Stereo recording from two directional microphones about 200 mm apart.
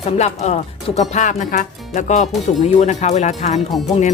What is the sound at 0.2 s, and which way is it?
Speech, 35° left (ahead or behind).